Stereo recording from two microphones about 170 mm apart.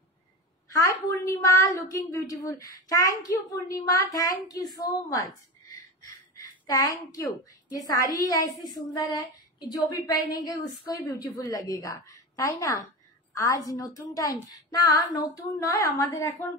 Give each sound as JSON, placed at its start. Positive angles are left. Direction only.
{"t": 0.7, "sound": "a woman's voice", "side_deg": 20}
{"t": 4.7, "sound": "a sound", "side_deg": 20}
{"t": 7.7, "sound": "a woman's voice", "side_deg": 20}